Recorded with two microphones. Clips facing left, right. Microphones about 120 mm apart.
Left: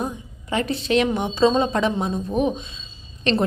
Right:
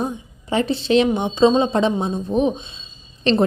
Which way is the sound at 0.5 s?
30° right (ahead or behind).